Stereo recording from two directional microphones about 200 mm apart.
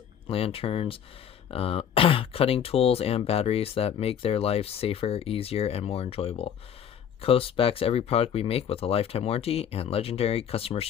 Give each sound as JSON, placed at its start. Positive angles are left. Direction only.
{"t": 0.3, "sound": "speech", "side_deg": 30}